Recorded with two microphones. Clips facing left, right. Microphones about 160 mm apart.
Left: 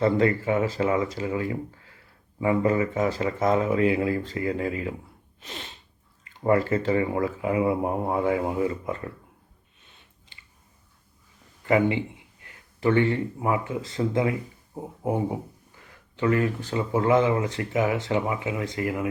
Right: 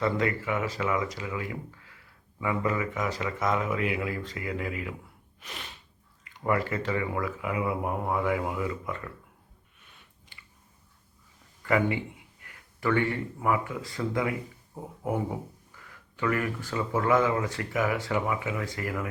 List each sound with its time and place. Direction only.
0.0 s speech: 30° left (ahead or behind)
5.4 s sneeze: 25° left (ahead or behind)
6.2 s speech: 30° left (ahead or behind)
9.8 s a sound: 25° left (ahead or behind)
11.6 s speech: 25° left (ahead or behind)